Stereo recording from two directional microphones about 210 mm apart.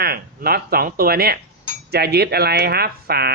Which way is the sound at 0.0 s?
45° right (ahead or behind).